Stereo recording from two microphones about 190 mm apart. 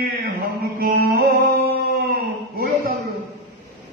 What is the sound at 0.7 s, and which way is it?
Music, 50° right (ahead or behind).